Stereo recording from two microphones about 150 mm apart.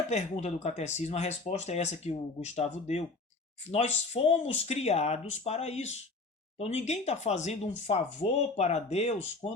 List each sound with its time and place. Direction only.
0.1 s speech: 50° left (ahead or behind)